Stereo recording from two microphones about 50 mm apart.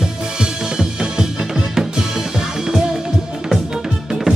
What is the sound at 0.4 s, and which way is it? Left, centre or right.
Music, centre.